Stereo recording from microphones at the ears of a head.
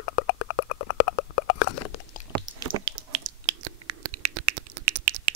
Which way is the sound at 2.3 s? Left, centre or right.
Right.